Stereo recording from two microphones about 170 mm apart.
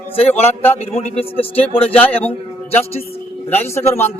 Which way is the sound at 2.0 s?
10° left (ahead or behind).